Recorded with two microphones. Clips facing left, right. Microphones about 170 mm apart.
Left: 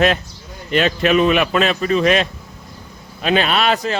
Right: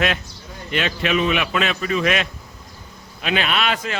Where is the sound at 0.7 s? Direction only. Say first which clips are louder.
Left 6 dB; 40° left (ahead or behind).